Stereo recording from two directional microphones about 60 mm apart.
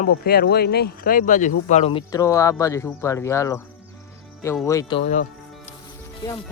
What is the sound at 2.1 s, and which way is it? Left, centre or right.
Speech, left.